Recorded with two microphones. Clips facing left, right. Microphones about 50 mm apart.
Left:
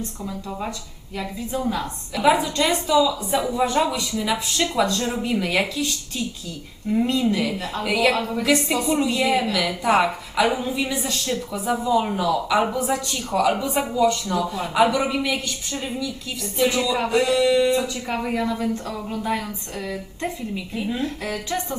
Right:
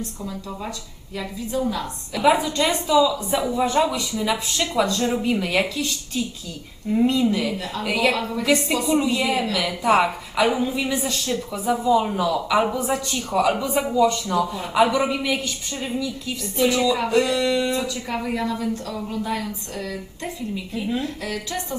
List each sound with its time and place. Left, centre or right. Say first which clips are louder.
2.1 s a woman's voice: even; centre
7.6 s a woman's voice: left 1 dB; centre
7.9 s a woman's voice: left 1 dB; centre
18.1 s a woman's voice: left 1 dB; centre
18.6 s speech: left 1 dB; left
20.7 s a woman's voice: right 2 dB; centre
21.0 s speech: left 1 dB; left